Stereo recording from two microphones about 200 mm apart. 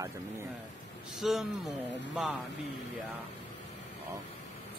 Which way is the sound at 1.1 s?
Centre (ahead or behind).